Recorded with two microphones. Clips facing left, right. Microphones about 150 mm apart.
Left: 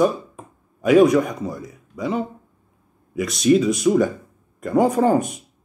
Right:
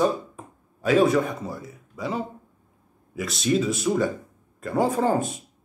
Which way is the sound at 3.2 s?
15° left (ahead or behind).